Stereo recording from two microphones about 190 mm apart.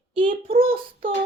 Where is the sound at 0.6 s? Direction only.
30° right (ahead or behind).